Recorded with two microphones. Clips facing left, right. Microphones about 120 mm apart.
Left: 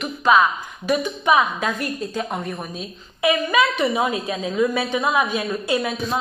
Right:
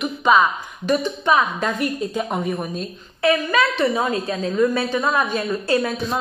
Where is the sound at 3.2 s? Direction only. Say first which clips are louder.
Right 1 dB; 15° left (ahead or behind).